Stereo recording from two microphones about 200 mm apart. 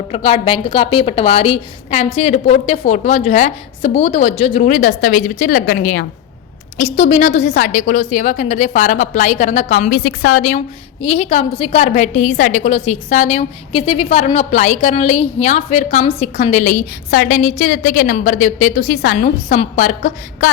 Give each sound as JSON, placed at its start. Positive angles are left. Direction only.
{"t": 0.1, "sound": "a woman's voice", "side_deg": 30}
{"t": 6.7, "sound": "a woman's voice", "side_deg": 35}
{"t": 11.0, "sound": "a woman's voice", "side_deg": 30}